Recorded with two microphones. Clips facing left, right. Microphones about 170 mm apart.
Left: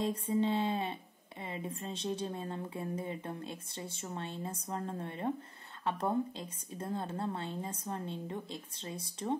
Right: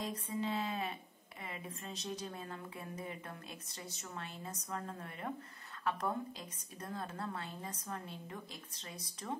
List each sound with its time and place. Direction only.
0.0 s a woman's voice: 25° left (ahead or behind)